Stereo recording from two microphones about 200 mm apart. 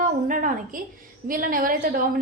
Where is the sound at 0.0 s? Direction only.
40° right (ahead or behind).